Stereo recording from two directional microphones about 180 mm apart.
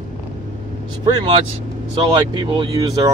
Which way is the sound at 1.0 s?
30° right (ahead or behind).